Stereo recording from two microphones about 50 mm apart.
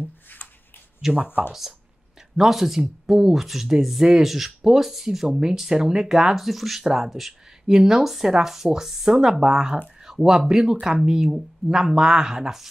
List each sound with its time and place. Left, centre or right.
1.1 s speech: right
2.3 s speech: centre